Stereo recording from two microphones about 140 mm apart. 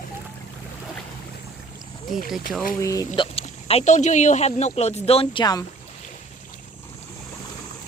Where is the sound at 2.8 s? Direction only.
25° left (ahead or behind).